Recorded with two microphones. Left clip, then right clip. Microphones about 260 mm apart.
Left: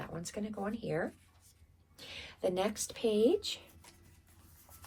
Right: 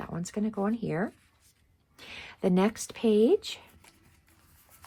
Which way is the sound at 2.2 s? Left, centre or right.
Right.